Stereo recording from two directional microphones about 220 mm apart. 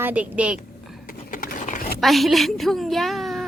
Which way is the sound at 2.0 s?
Centre (ahead or behind).